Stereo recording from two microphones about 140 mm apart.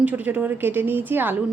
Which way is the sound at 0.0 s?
10° right (ahead or behind).